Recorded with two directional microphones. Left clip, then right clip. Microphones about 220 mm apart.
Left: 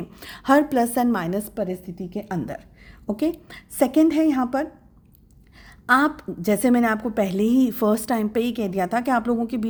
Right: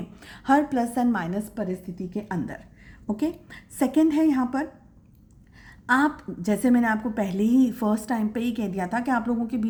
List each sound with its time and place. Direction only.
0.1 s a woman's voice: 45° left (ahead or behind)
5.6 s a woman's voice: 40° left (ahead or behind)